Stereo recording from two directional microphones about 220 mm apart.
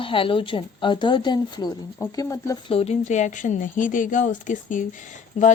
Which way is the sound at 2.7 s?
30° left (ahead or behind).